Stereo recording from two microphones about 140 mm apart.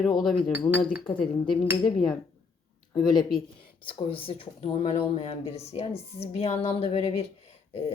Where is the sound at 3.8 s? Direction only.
40° left (ahead or behind).